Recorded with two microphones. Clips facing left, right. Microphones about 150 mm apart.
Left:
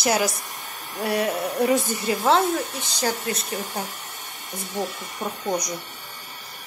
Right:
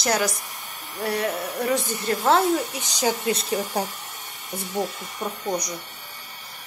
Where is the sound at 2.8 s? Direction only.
15° right (ahead or behind).